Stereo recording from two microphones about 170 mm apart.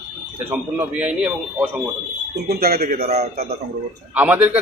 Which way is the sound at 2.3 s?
65° right (ahead or behind).